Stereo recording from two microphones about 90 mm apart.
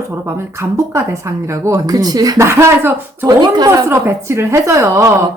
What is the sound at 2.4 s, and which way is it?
Speech, 30° right (ahead or behind).